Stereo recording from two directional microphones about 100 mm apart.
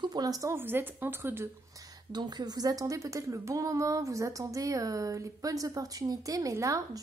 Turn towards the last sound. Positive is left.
turn(degrees=-35)  # may be behind; listen again after turning